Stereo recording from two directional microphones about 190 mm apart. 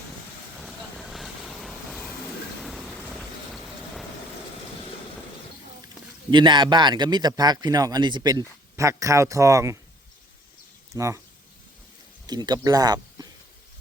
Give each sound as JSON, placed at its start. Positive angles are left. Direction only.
{"t": 0.6, "sound": "vehicle", "side_deg": 0}
{"t": 6.3, "sound": "a man's voice", "side_deg": -25}
{"t": 10.9, "sound": "a man's voice", "side_deg": -15}
{"t": 12.2, "sound": "speech", "side_deg": -20}